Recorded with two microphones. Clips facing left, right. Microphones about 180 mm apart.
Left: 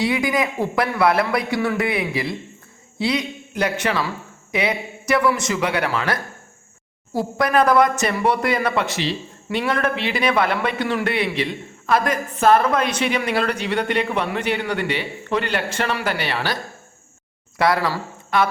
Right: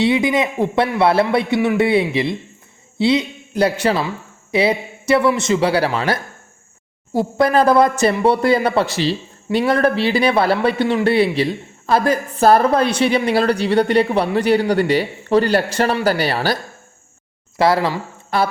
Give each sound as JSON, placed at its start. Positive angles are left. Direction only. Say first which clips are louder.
{"t": 0.0, "sound": "a man's voice", "louder": "right 4 dB", "side_deg": -25}
{"t": 17.6, "sound": "speech", "louder": "right 3 dB", "side_deg": -25}